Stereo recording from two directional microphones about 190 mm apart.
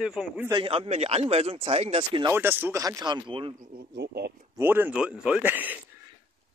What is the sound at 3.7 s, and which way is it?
Speech, 60° right (ahead or behind).